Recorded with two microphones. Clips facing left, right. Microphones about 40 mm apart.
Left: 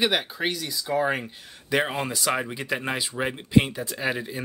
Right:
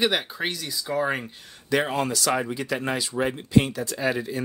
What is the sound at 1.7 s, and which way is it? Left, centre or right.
Speech, centre.